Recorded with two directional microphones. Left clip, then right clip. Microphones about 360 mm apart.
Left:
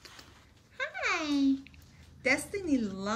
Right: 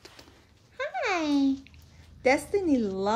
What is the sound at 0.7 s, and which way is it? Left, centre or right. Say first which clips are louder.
Bathtub: right 3 dB; centre.